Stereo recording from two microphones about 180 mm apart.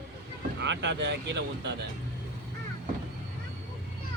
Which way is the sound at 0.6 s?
80° right.